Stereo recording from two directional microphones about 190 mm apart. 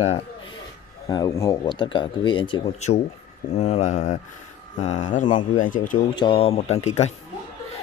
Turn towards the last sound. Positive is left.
turn(degrees=35)  # may be behind; listen again after turning